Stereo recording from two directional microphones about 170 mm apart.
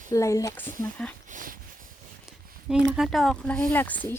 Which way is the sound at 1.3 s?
50° right (ahead or behind).